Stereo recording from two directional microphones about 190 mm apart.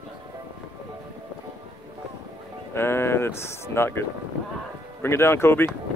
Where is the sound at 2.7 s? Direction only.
10° left (ahead or behind).